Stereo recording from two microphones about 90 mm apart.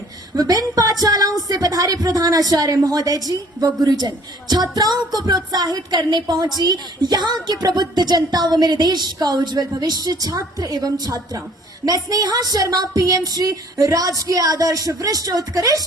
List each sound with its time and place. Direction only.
0.3 s speech: 45° right (ahead or behind)